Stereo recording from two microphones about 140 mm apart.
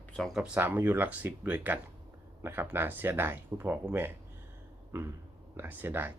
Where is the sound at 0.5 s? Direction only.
15° right (ahead or behind).